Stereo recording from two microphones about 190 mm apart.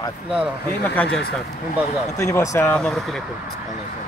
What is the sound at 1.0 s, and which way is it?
Speech, 10° left (ahead or behind).